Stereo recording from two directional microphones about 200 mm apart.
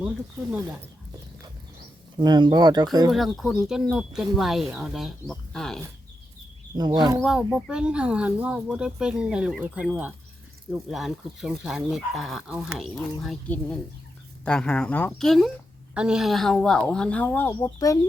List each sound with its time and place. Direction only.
0.5 s speech: 10° right (ahead or behind)
2.1 s speech: 20° right (ahead or behind)
3.1 s speech: centre (ahead or behind)
6.7 s speech: 20° right (ahead or behind)
7.2 s speech: centre (ahead or behind); by 18.0 s 15° left (ahead or behind)